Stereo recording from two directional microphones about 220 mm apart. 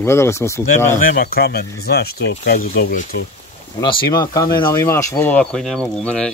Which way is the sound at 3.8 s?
20° left (ahead or behind).